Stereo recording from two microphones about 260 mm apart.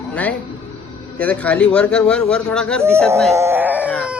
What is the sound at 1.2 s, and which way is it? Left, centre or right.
A man's voice, centre.